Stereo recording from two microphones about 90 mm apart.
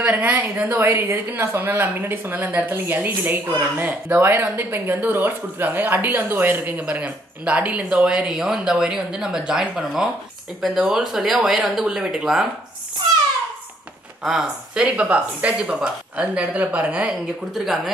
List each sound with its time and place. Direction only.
0.0 s a woman's voice: 20° right (ahead or behind)
14.2 s speech: 10° right (ahead or behind)